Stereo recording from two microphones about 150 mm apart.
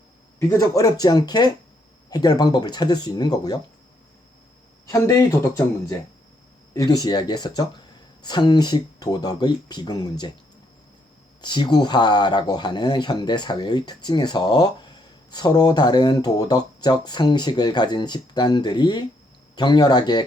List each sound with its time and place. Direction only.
0.3 s speech: 20° left (ahead or behind)
4.9 s speech: 20° left (ahead or behind)
11.4 s speech: 30° left (ahead or behind)